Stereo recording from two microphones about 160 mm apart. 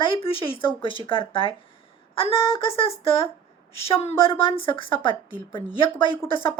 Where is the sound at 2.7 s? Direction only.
35° left (ahead or behind).